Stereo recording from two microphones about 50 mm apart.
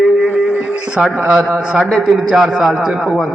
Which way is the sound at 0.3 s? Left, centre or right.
Centre.